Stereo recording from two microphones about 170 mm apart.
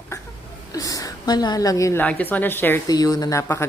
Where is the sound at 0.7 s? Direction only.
20° left (ahead or behind).